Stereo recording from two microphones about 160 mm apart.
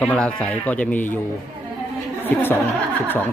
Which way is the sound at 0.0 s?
10° left (ahead or behind).